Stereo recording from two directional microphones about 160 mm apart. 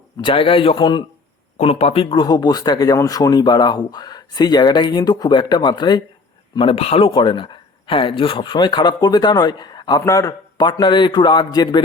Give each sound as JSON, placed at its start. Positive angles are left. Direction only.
{"t": 0.2, "sound": "a man's voice", "side_deg": 30}